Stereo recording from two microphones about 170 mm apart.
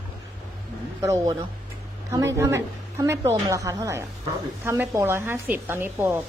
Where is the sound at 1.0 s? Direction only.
20° right (ahead or behind).